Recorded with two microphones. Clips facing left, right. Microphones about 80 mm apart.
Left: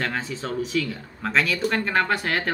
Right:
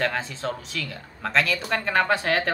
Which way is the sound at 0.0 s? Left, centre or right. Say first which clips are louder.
Right 2 dB; centre.